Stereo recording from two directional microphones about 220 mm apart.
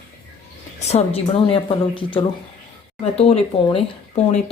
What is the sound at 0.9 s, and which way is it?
Speech, 25° left (ahead or behind).